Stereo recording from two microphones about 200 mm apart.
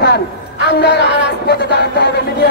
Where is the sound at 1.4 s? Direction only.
55° left (ahead or behind).